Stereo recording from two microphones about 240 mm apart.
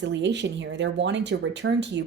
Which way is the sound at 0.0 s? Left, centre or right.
Right.